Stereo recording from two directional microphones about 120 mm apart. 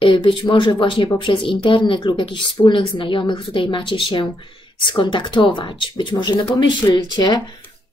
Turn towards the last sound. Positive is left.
turn(degrees=35)  # may be behind; listen again after turning